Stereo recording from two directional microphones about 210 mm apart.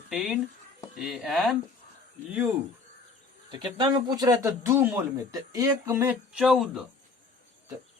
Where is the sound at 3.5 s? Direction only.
20° right (ahead or behind); by 6.9 s centre (ahead or behind).